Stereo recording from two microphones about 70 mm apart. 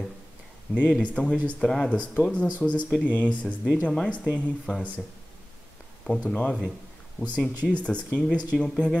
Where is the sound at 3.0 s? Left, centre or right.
Left.